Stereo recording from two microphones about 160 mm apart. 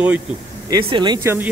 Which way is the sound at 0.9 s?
30° right (ahead or behind).